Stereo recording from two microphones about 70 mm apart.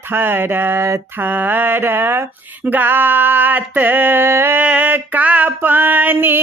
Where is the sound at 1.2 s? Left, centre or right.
Right.